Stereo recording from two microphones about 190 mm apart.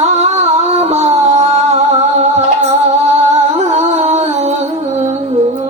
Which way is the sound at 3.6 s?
35° right (ahead or behind).